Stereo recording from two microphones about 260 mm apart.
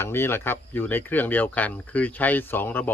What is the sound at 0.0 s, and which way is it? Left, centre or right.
Speech, centre.